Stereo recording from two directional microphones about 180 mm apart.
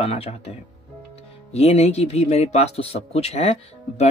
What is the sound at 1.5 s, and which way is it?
Speech, 35° left (ahead or behind).